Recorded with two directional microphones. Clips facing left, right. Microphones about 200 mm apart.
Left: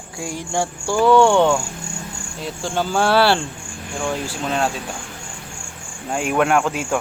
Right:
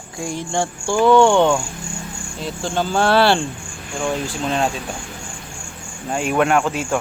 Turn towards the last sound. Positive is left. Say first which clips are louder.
# right 1 dB
turn(degrees=0)  # may be behind; listen again after turning